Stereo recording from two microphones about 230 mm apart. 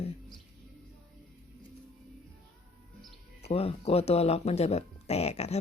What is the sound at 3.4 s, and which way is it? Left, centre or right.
Speech, left.